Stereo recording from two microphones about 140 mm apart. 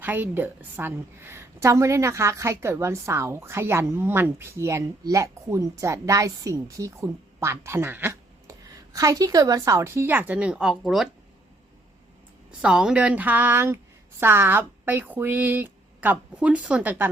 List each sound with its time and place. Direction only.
0.0 s a woman's voice: 15° right (ahead or behind)
12.5 s speech: 5° right (ahead or behind)